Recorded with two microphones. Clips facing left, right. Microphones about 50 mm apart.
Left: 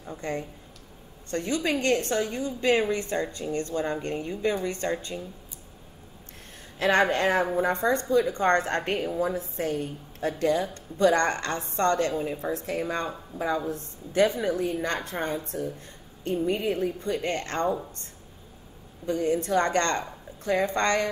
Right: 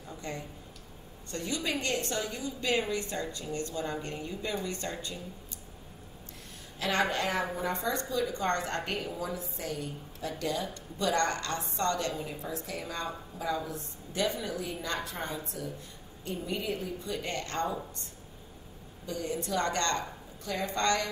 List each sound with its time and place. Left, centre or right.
0.0 s a woman's voice: left
6.8 s a woman's voice: left
19.0 s a woman's voice: left